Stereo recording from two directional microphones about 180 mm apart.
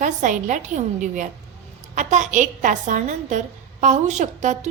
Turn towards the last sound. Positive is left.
turn(degrees=-40)  # may be behind; listen again after turning